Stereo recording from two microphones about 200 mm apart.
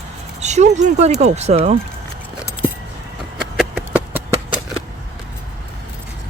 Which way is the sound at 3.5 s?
Centre (ahead or behind).